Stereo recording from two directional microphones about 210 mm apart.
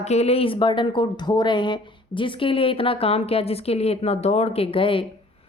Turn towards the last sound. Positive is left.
turn(degrees=25)  # may be behind; listen again after turning